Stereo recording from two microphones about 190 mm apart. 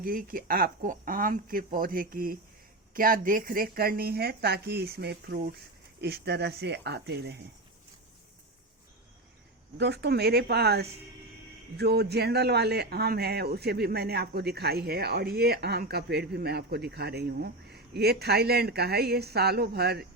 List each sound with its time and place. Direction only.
0.0 s speech: 50° right (ahead or behind)
9.7 s speech: 60° right (ahead or behind)